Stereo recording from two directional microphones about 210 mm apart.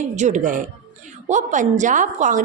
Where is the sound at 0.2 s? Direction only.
35° right (ahead or behind).